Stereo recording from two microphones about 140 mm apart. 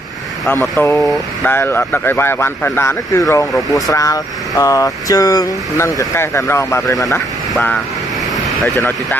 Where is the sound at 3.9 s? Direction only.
25° left (ahead or behind).